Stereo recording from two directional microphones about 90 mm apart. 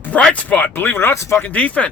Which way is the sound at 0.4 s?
20° left (ahead or behind).